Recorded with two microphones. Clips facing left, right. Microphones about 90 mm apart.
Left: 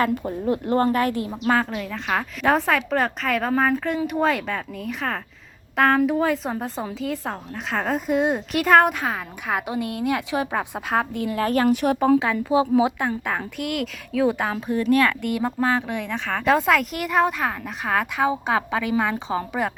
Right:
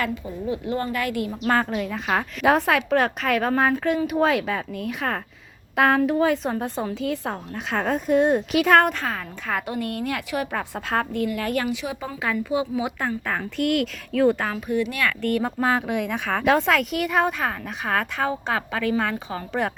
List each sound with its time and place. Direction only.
0.1 s a woman's voice: 55° left (ahead or behind); by 1.4 s 30° left (ahead or behind)
1.5 s a woman's voice: centre (ahead or behind)
11.1 s a woman's voice: 25° left (ahead or behind)
11.7 s speech: 50° left (ahead or behind)
12.2 s speech: 25° left (ahead or behind)
13.0 s a woman's voice: 15° left (ahead or behind)
14.5 s a woman's voice: 35° left (ahead or behind)
15.2 s a woman's voice: 10° left (ahead or behind)
15.6 s speech: 15° right (ahead or behind)
16.6 s a woman's voice: centre (ahead or behind)